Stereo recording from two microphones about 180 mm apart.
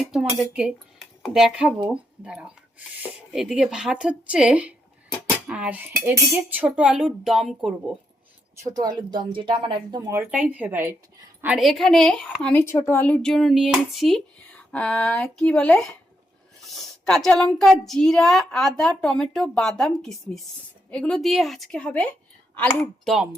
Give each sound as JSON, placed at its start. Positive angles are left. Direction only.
{"t": 0.1, "sound": "a woman's voice", "side_deg": -5}
{"t": 8.5, "sound": "speech", "side_deg": -20}
{"t": 10.1, "sound": "a woman's voice", "side_deg": -10}